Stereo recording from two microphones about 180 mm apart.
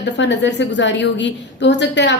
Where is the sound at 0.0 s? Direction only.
80° left.